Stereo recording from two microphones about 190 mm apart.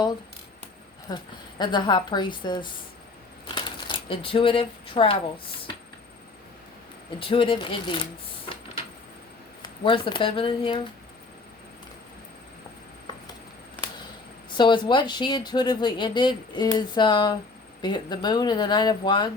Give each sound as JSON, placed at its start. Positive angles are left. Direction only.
{"t": 1.1, "sound": "speech", "side_deg": 25}
{"t": 7.2, "sound": "speech", "side_deg": 25}
{"t": 9.6, "sound": "speech", "side_deg": 25}
{"t": 14.5, "sound": "speech", "side_deg": 25}